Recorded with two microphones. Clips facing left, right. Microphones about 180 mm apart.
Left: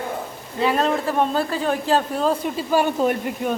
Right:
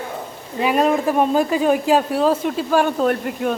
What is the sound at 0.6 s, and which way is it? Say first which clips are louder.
Speech: right 3 dB; 15° right (ahead or behind).